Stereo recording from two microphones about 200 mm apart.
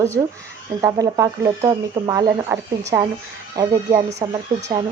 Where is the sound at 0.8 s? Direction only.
15° right (ahead or behind).